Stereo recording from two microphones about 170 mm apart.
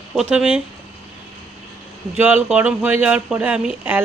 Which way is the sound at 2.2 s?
10° right (ahead or behind).